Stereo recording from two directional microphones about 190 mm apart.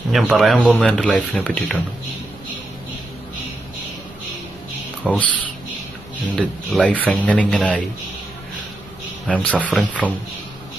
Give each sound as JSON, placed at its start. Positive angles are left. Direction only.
{"t": 0.1, "sound": "speech", "side_deg": 0}
{"t": 5.0, "sound": "speech", "side_deg": 0}
{"t": 6.3, "sound": "speech", "side_deg": 0}
{"t": 9.2, "sound": "speech", "side_deg": 5}